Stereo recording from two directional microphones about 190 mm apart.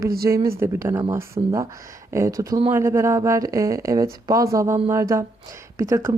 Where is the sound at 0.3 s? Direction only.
15° right (ahead or behind).